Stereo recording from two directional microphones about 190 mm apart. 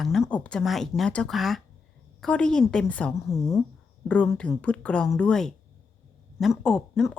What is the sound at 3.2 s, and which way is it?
Speech, 15° left (ahead or behind).